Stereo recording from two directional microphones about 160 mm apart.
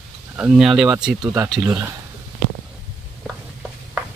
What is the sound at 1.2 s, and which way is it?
Speech, 20° right (ahead or behind).